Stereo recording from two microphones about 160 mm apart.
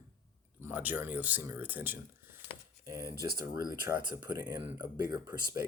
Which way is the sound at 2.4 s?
15° right (ahead or behind).